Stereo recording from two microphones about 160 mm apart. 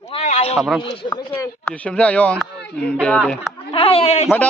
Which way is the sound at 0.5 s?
Centre (ahead or behind).